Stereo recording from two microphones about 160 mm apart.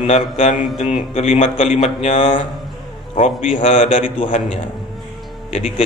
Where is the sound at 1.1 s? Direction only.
40° left (ahead or behind).